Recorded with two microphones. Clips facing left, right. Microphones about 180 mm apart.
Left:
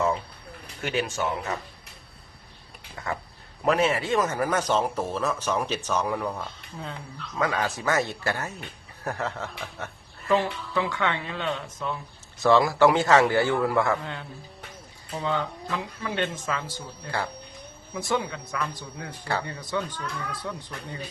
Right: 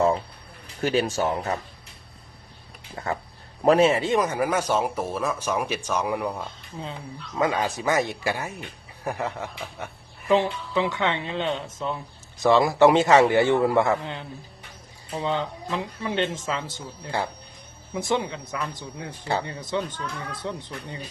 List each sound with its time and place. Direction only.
0.8 s speech: 35° right (ahead or behind)
2.9 s a man's voice: 30° right (ahead or behind)